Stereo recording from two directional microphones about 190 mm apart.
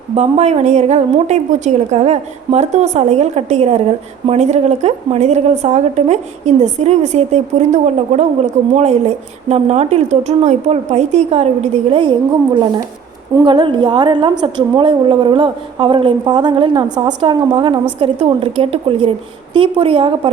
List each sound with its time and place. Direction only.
0.2 s a woman's voice: 35° right (ahead or behind)
13.3 s a woman's voice: 25° right (ahead or behind)